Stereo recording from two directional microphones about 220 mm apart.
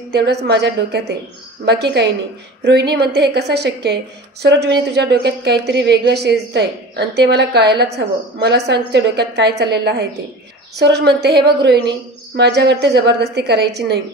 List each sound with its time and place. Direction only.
0.1 s a woman's voice: 50° right (ahead or behind)